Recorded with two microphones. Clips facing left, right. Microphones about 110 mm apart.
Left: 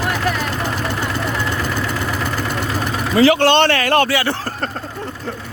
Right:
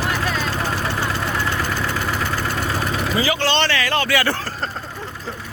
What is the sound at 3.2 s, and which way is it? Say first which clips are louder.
Speech: left 9 dB; 60° left (ahead or behind).